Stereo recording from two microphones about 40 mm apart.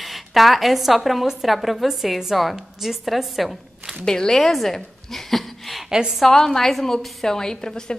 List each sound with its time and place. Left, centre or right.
0.0 s a woman's voice: centre
4.0 s a woman's voice: centre
4.4 s a sound: centre
5.9 s a woman's voice: centre
6.2 s a woman's voice: centre